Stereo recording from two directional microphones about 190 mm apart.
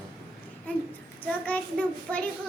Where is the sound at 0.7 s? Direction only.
10° left (ahead or behind).